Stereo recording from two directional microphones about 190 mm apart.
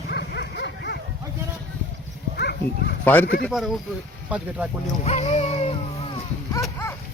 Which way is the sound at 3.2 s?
50° left (ahead or behind).